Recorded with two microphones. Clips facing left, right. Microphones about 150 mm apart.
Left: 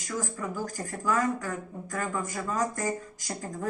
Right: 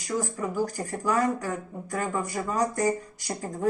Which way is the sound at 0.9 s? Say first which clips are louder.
Even; 15° right (ahead or behind).